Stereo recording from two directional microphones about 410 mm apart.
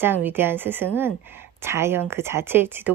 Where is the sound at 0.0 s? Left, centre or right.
Centre.